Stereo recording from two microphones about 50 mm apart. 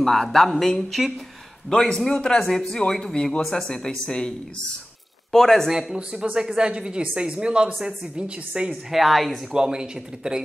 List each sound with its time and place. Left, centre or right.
0.0 s speech: centre
5.3 s speech: centre
5.7 s a woman's voice: centre
8.9 s a woman's voice: centre
9.5 s a woman's voice: centre